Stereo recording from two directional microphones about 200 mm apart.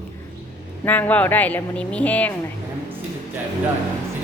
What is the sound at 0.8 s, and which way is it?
Speech, 10° left (ahead or behind).